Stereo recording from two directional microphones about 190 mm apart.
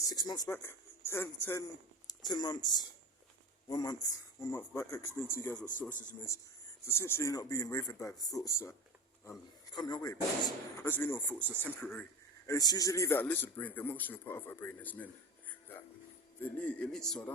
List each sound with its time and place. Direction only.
0.1 s speech: 20° left (ahead or behind)
6.8 s speech: 15° left (ahead or behind)
9.7 s speech: 20° left (ahead or behind)
16.4 s speech: 5° left (ahead or behind)